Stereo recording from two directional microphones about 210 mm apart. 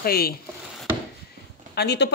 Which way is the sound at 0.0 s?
45° left (ahead or behind).